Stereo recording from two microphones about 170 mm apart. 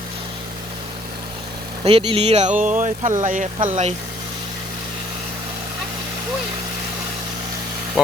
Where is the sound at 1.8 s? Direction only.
30° right (ahead or behind); by 3.7 s 50° right (ahead or behind).